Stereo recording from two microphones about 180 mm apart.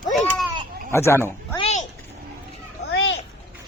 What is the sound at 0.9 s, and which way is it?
Speech, 15° left (ahead or behind).